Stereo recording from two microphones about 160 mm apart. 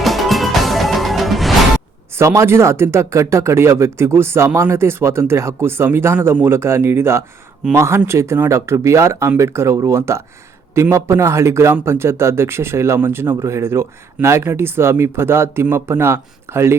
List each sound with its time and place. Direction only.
0.0 s music: centre (ahead or behind)
2.1 s speech: 20° right (ahead or behind)